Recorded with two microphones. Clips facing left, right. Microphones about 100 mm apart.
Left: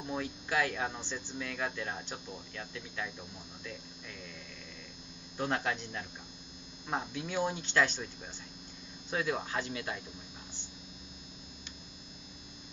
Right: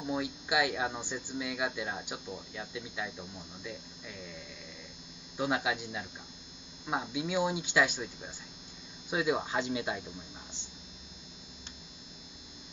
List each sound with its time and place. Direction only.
0.0 s speech: 10° right (ahead or behind)
5.4 s speech: 10° right (ahead or behind)